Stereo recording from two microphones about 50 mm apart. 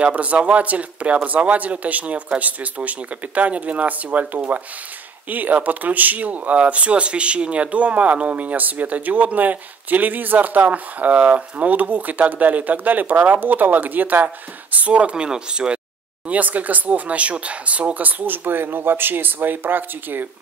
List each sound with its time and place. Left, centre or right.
0.0 s speech: right
16.3 s speech: right